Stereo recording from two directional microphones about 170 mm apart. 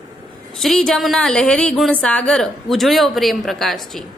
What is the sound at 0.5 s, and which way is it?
A woman's voice, centre (ahead or behind).